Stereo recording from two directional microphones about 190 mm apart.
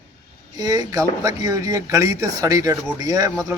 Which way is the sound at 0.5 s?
20° right (ahead or behind).